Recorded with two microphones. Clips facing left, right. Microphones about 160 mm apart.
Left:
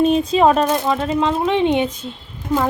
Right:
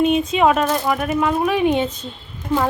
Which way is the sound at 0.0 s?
35° left (ahead or behind).